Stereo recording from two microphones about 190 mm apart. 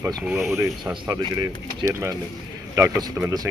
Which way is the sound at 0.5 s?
15° right (ahead or behind).